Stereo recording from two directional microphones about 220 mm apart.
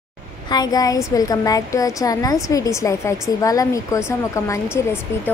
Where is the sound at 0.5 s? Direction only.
15° left (ahead or behind).